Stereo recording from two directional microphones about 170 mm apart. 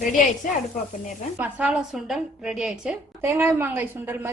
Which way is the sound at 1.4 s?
5° right (ahead or behind).